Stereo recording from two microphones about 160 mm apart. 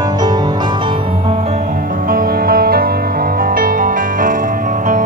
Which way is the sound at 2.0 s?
65° right (ahead or behind).